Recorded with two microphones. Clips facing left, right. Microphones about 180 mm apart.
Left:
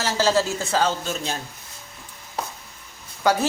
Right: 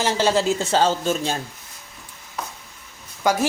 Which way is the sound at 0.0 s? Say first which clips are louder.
Right 1 dB; 20° right (ahead or behind).